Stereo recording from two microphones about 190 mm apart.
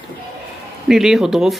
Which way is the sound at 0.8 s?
Centre (ahead or behind).